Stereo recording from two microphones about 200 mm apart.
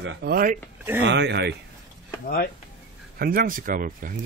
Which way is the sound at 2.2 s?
50° left (ahead or behind).